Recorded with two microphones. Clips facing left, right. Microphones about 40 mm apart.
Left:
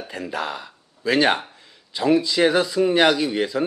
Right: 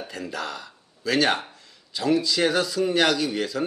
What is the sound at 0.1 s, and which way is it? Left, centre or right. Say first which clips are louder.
Speech: left 6 dB; left.